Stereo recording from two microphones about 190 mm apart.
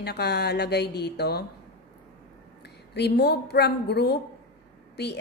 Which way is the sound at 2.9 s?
60° left (ahead or behind).